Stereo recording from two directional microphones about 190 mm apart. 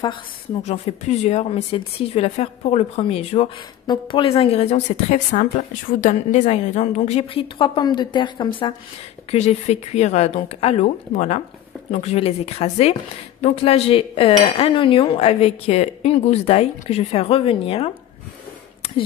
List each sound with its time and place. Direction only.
0.7 s a woman's voice: 35° left (ahead or behind)
9.3 s a woman's voice: 35° left (ahead or behind)